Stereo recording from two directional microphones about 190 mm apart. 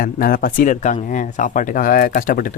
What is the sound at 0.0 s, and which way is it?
Speech, 50° left (ahead or behind).